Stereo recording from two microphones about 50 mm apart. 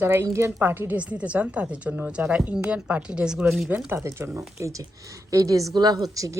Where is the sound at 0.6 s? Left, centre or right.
Right.